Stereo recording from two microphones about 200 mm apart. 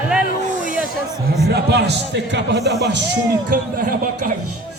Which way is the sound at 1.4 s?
55° right (ahead or behind).